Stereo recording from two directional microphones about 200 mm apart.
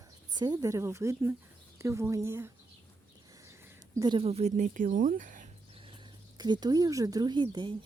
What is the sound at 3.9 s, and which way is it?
Speech, 20° right (ahead or behind).